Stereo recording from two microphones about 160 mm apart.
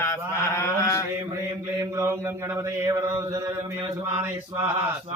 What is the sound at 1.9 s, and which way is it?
Mantra, 15° right (ahead or behind).